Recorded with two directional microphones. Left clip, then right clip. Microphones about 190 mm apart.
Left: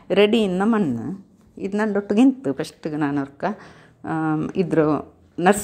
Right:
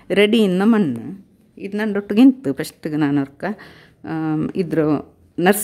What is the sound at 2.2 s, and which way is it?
A woman's voice, 25° right (ahead or behind).